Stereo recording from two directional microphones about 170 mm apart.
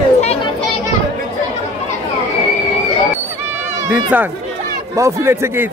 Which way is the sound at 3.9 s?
10° right (ahead or behind).